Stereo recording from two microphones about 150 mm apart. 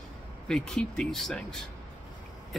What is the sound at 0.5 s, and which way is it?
A man's voice, 5° left (ahead or behind).